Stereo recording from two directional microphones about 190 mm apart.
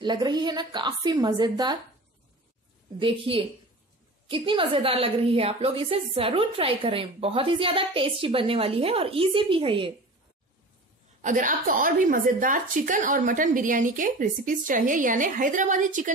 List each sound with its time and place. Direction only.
0.0 s a woman's voice: 20° right (ahead or behind)
3.0 s a woman's voice: 30° right (ahead or behind)
11.1 s a woman's voice: 40° right (ahead or behind)